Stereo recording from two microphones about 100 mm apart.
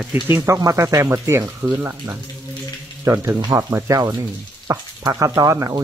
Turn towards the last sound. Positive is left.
turn(degrees=-35)  # may be behind; listen again after turning